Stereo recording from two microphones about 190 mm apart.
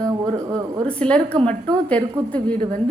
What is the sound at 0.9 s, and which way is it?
A woman's voice, 5° left (ahead or behind).